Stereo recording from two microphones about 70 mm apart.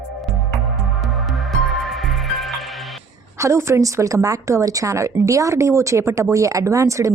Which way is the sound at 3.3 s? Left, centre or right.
Right.